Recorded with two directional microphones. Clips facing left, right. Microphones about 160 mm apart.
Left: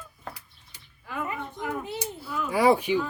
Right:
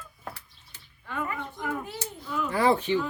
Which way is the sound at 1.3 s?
20° left (ahead or behind).